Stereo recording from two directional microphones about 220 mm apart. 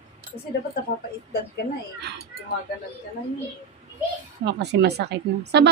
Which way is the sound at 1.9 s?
50° right (ahead or behind).